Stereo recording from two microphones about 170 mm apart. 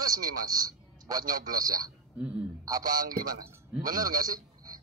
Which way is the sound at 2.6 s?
20° right (ahead or behind).